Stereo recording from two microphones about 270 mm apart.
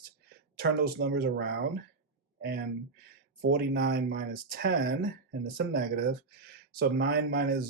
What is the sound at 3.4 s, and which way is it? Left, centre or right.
Speech, right.